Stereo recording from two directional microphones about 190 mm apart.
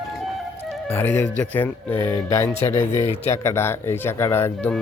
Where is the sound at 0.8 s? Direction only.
10° left (ahead or behind).